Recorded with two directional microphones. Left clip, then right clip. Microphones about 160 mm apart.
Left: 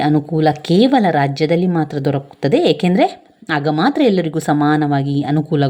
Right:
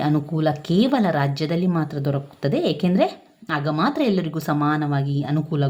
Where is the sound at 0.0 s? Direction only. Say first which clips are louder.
Left 7 dB; 25° left (ahead or behind).